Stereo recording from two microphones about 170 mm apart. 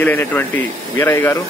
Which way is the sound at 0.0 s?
10° left (ahead or behind).